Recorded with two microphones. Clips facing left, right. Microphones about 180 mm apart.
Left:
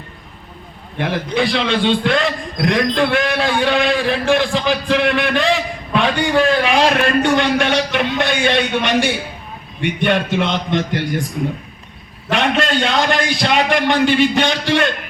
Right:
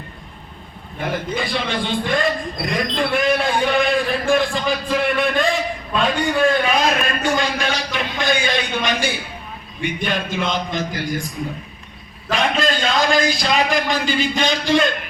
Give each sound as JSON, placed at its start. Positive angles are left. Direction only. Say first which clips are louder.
{"t": 0.9, "sound": "a man's voice", "louder": "left 5 dB", "side_deg": 85}
{"t": 12.3, "sound": "a man's voice", "louder": "left 3 dB", "side_deg": 70}